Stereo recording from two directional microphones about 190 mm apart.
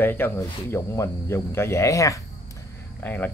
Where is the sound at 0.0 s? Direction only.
10° left (ahead or behind).